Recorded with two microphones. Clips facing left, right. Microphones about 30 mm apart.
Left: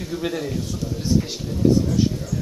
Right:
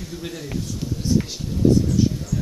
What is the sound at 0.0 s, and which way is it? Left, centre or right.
A man's voice, centre.